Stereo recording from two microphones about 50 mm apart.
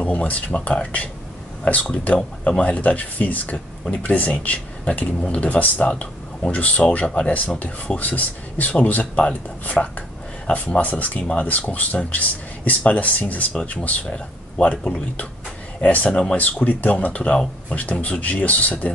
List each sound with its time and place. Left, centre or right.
0.0 s speech: left